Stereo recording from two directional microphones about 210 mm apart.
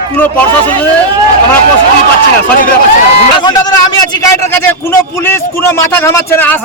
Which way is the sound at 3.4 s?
20° left (ahead or behind).